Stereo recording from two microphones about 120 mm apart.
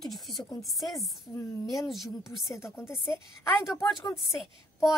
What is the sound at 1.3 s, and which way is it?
Speech, 25° left (ahead or behind).